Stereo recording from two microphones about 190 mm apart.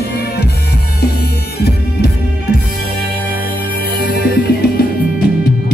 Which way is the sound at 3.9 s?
55° left (ahead or behind).